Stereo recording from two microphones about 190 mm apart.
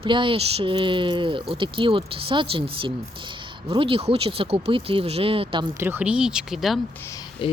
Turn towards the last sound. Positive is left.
turn(degrees=25)  # may be behind; listen again after turning